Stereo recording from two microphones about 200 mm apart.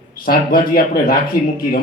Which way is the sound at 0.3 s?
45° left (ahead or behind).